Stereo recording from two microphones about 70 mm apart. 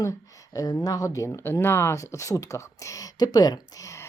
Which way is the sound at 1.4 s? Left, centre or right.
Left.